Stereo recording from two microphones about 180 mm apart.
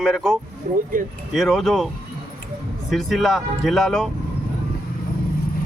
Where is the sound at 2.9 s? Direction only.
Centre (ahead or behind).